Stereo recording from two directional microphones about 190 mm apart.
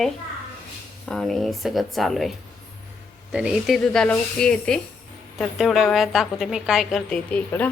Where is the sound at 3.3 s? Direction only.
5° right (ahead or behind).